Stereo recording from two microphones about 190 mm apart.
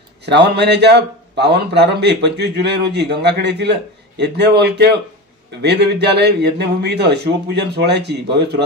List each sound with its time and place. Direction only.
0.2 s a man's voice: 60° right (ahead or behind)